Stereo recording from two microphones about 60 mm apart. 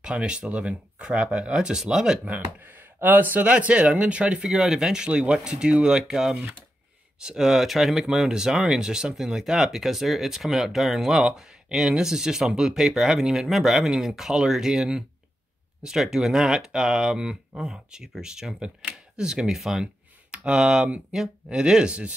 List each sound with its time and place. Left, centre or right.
0.0 s speech: centre
2.2 s speech: right
4.5 s speech: centre